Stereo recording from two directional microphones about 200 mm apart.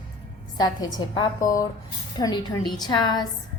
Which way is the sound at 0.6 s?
20° left (ahead or behind).